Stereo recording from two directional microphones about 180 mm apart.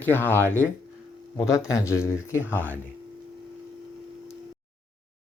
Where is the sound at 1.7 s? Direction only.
15° left (ahead or behind).